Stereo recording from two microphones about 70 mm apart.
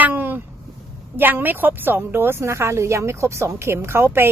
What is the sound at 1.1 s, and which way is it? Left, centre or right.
A woman's voice, right.